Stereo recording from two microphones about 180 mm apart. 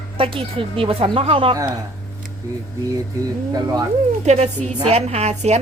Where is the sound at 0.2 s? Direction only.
30° right (ahead or behind).